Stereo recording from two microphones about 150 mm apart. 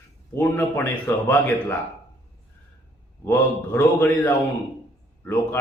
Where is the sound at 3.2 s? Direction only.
15° left (ahead or behind).